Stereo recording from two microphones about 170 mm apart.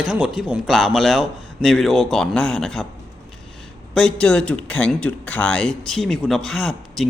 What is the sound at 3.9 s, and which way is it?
A man's voice, 5° left (ahead or behind).